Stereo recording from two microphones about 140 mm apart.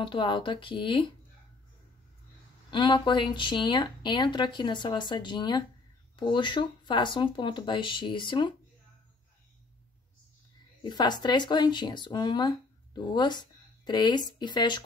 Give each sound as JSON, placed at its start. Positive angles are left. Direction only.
{"t": 0.0, "sound": "speech", "side_deg": 35}
{"t": 2.7, "sound": "speech", "side_deg": 35}
{"t": 10.8, "sound": "speech", "side_deg": 30}